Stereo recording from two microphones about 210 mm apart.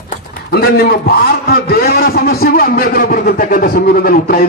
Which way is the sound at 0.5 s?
50° left (ahead or behind).